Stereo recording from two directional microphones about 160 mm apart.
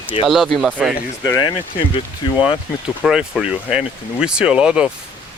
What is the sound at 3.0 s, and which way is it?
Speech, centre (ahead or behind).